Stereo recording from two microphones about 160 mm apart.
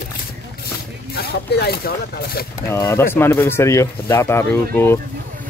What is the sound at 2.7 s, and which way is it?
Speech, 15° left (ahead or behind).